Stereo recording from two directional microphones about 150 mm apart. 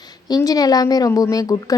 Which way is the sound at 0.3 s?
25° left (ahead or behind).